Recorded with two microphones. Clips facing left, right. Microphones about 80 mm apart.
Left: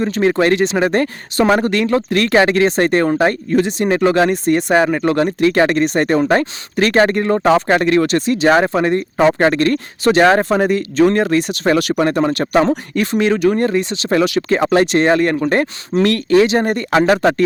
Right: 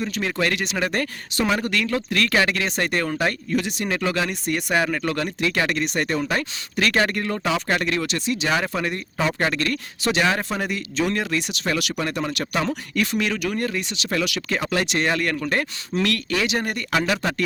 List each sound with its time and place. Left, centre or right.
0.0 s speech: left
7.3 s speech: left